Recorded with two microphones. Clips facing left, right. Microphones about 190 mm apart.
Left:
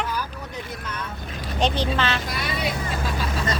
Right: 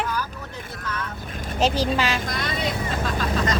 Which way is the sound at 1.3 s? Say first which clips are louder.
Even; 50° right (ahead or behind).